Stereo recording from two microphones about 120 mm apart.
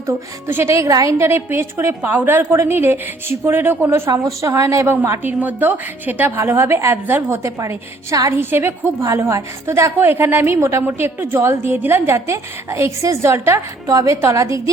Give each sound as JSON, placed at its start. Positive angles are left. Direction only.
{"t": 0.1, "sound": "a woman's voice", "side_deg": -20}